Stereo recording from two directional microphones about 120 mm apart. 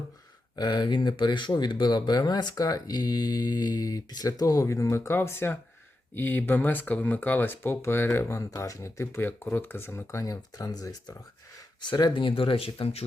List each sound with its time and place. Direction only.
0.5 s speech: 35° left (ahead or behind)